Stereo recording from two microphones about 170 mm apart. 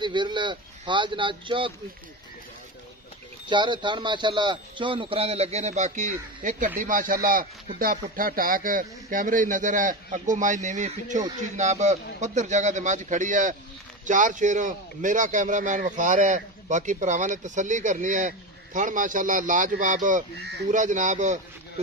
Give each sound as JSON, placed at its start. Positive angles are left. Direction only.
{"t": 0.0, "sound": "speech", "side_deg": -25}
{"t": 3.4, "sound": "speech", "side_deg": -30}